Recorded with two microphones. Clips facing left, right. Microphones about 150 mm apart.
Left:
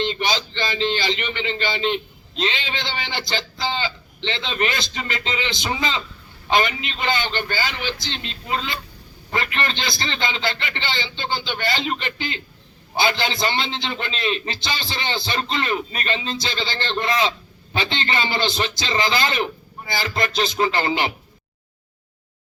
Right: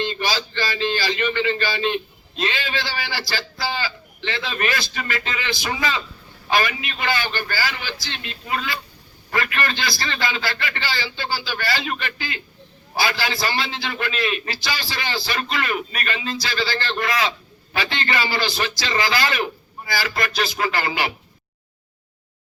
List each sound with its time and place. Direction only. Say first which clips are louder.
0.0 s speech: left 1 dB; 20° left (ahead or behind)